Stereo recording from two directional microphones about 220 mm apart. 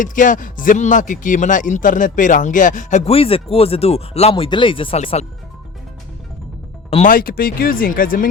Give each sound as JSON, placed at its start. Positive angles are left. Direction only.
{"t": 0.0, "sound": "speech", "side_deg": 35}
{"t": 6.9, "sound": "speech", "side_deg": 35}